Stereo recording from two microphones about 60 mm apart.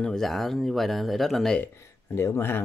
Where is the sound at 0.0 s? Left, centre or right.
Centre.